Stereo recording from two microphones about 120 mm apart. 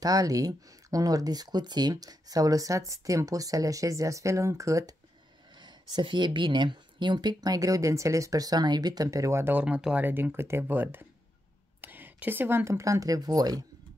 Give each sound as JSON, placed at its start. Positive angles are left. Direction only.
{"t": 0.0, "sound": "speech", "side_deg": -30}